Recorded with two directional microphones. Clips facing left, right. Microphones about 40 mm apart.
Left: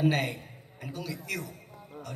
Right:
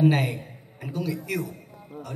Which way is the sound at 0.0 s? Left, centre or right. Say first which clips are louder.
Right 5 dB; centre.